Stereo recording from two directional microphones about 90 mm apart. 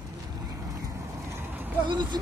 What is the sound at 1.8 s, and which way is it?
Speech, 60° right (ahead or behind).